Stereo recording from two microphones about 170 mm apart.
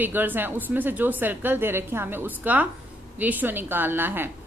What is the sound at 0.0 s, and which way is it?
A woman's voice, 10° right (ahead or behind).